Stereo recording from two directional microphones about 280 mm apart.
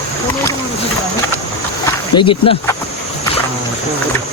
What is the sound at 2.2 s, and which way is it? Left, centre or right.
Speech, centre.